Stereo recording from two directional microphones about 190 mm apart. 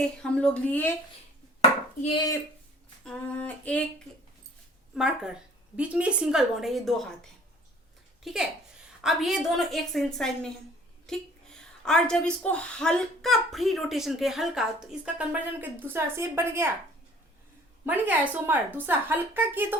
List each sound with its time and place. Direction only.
0.0 s speech: 5° left (ahead or behind)
2.0 s chopping: 30° left (ahead or behind)
3.0 s female singing: 5° left (ahead or behind)
4.9 s speech: 5° right (ahead or behind)
8.2 s speech: centre (ahead or behind)
17.8 s a woman's voice: 10° right (ahead or behind)